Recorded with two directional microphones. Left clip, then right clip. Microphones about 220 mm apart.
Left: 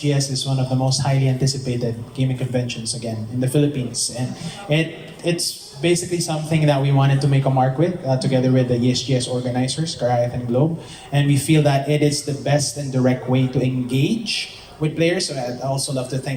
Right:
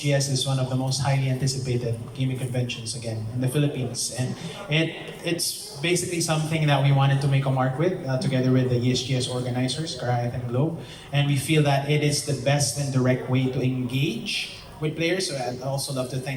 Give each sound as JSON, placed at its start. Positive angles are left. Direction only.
{"t": 0.0, "sound": "speech", "side_deg": 25}
{"t": 3.4, "sound": "speech", "side_deg": 25}